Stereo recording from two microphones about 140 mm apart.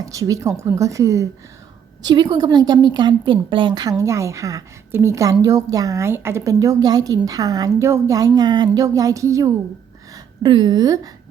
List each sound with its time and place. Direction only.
0.0 s a woman's voice: 25° right (ahead or behind)
10.4 s speech: 35° right (ahead or behind)